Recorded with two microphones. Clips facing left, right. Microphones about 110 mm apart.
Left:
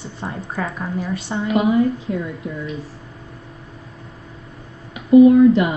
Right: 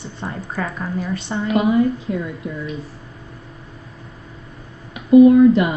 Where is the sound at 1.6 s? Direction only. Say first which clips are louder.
Even; 20° left (ahead or behind).